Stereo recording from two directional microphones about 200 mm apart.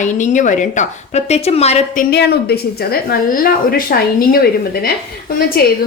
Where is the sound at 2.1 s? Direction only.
55° left (ahead or behind).